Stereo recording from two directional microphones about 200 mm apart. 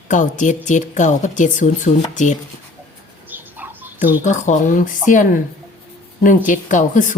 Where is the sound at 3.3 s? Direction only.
10° right (ahead or behind).